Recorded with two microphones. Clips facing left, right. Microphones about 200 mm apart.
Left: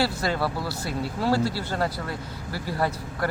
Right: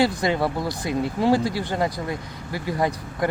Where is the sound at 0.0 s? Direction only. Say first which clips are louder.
Right 4 dB; 15° right (ahead or behind).